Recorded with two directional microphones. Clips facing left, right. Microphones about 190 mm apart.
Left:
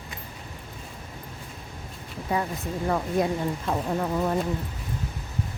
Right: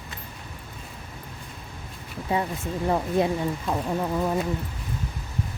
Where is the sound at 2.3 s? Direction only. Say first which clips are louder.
Right 1 dB; 25° right (ahead or behind).